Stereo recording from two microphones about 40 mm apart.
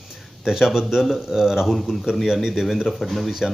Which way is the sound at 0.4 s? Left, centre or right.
Centre.